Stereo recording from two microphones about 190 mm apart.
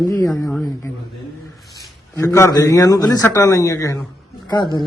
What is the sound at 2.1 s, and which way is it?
A man's voice, 15° left (ahead or behind).